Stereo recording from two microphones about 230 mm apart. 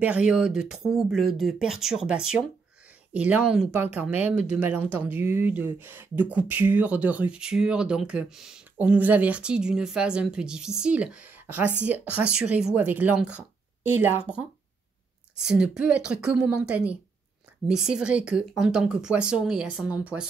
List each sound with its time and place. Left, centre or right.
0.0 s speech: centre